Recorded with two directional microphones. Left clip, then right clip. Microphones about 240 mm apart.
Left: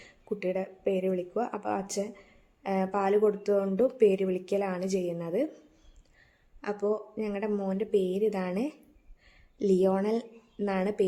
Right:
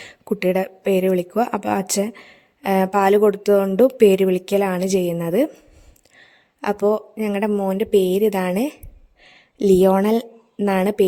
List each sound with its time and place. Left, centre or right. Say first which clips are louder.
0.0 s a woman's voice: right 11 dB; right